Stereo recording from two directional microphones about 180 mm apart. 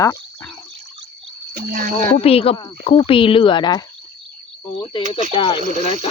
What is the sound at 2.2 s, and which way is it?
Speech, 35° left (ahead or behind).